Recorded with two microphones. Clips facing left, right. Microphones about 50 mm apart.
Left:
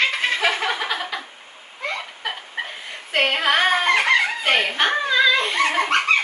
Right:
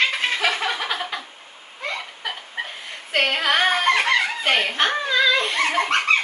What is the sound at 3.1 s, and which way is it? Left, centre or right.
Female singing, centre.